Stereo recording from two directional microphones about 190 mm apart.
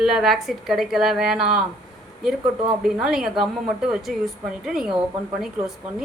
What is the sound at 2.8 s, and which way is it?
Speech, 5° right (ahead or behind).